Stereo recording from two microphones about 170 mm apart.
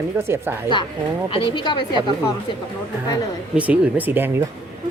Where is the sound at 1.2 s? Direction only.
30° left (ahead or behind).